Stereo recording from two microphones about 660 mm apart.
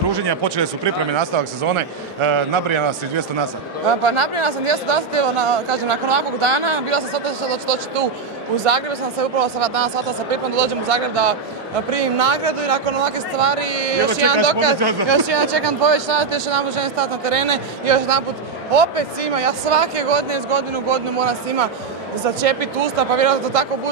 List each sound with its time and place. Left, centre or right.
0.1 s speech: right
3.8 s speech: right